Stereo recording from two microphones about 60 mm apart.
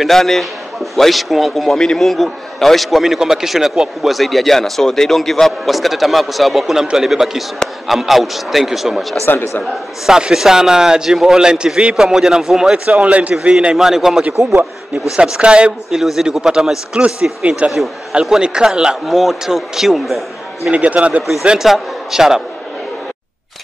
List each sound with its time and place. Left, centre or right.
0.0 s a man's voice: centre
7.5 s speech: centre
7.9 s a man's voice: centre
9.2 s speech: left
10.0 s a man's voice: centre
12.7 s a man's voice: centre
13.7 s a man's voice: centre
15.9 s a man's voice: centre
19.0 s a man's voice: centre
20.7 s a man's voice: right
21.5 s a man's voice: centre